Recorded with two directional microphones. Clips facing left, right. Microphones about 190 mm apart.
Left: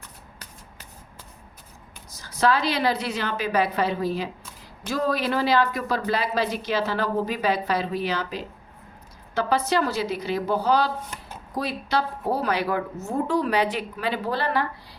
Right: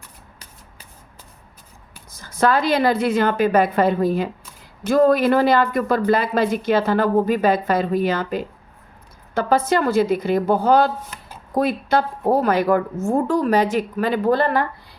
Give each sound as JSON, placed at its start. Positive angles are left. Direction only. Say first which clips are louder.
{"t": 2.1, "sound": "a woman's voice", "louder": "right 4 dB", "side_deg": -50}